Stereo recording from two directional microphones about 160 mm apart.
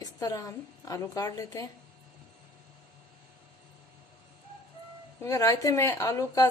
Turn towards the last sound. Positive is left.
turn(degrees=15)  # may be behind; listen again after turning